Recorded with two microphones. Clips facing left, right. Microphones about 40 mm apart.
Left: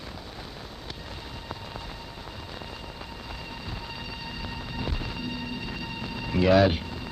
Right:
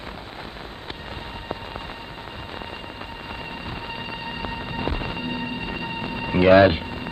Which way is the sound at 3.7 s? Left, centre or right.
Right.